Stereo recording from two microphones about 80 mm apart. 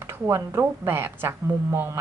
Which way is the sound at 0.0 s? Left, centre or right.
Right.